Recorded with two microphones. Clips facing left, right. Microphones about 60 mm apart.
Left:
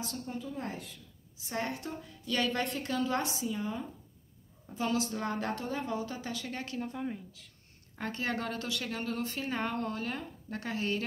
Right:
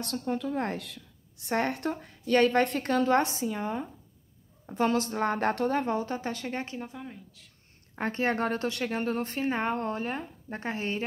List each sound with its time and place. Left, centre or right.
0.0 s a woman's voice: right
7.0 s speech: centre
7.9 s speech: right